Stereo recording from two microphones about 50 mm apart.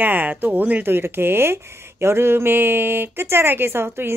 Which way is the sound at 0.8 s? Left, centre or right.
Right.